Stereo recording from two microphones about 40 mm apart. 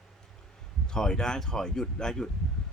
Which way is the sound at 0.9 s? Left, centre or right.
Centre.